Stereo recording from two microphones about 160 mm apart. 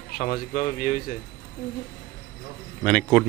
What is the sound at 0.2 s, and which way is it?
Speech, 60° left (ahead or behind).